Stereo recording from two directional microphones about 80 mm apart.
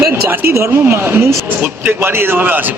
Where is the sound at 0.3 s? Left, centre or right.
Right.